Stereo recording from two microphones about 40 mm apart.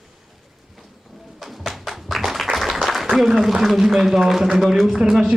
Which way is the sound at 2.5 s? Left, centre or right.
Centre.